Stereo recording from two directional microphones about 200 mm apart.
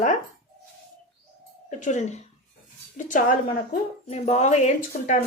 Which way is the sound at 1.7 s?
40° left (ahead or behind).